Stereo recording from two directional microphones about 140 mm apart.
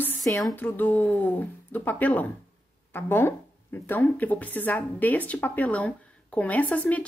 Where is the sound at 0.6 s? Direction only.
10° left (ahead or behind).